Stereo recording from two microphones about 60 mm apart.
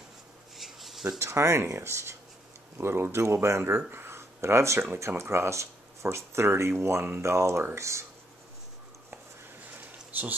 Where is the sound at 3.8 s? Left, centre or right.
Right.